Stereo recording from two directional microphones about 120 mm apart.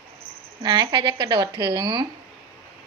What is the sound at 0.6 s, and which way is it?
Speech, 35° right (ahead or behind).